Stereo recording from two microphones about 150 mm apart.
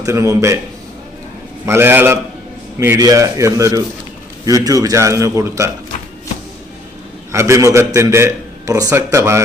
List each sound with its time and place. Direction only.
0.0 s a man's voice: 20° right (ahead or behind)
1.6 s a man's voice: 15° right (ahead or behind)
7.3 s a man's voice: 20° right (ahead or behind)